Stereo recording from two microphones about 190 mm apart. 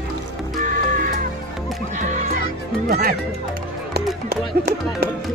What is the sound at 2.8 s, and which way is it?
Music, 55° right (ahead or behind).